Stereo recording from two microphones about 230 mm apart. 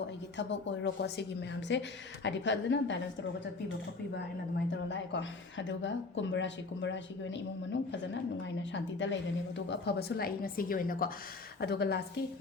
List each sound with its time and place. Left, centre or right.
0.3 s a woman's voice: left
4.5 s a woman's voice: left